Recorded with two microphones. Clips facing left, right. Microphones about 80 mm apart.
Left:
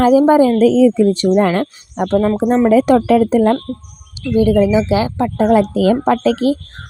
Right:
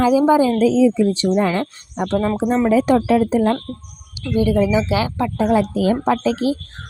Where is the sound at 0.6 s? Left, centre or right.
Left.